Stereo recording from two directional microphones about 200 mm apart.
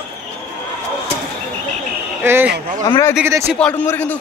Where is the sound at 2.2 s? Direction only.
10° right (ahead or behind).